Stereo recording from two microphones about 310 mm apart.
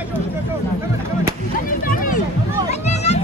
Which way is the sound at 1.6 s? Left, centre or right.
Left.